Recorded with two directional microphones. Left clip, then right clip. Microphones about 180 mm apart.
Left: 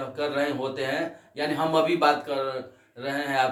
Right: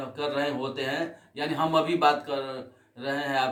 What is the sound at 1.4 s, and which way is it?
Speech, 20° right (ahead or behind).